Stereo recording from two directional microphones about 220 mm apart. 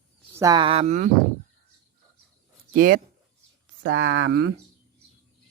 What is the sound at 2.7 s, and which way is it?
Speech, 40° right (ahead or behind).